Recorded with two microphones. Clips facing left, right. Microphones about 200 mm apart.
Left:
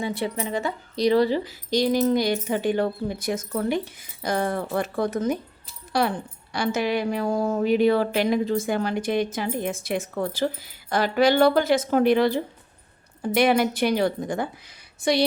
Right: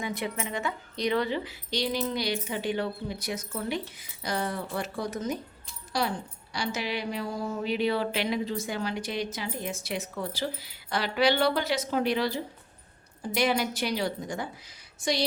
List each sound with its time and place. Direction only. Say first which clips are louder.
0.0 s a woman's voice: left 5 dB; 30° left (ahead or behind); by 15.2 s 60° left (ahead or behind)